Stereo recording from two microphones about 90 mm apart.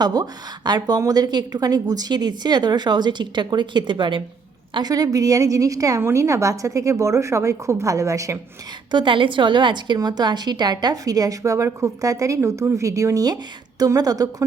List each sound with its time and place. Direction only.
0.0 s a woman's voice: 50° right (ahead or behind)
4.7 s a woman's voice: 45° right (ahead or behind)
8.9 s a woman's voice: 65° right (ahead or behind); by 14.4 s 45° right (ahead or behind)